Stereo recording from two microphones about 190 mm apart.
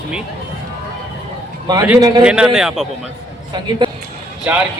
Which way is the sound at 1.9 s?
20° right (ahead or behind).